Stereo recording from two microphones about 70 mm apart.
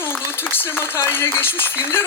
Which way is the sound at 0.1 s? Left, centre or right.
Left.